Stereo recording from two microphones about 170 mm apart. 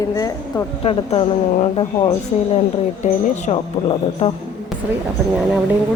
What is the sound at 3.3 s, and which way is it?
Speech, 40° left (ahead or behind).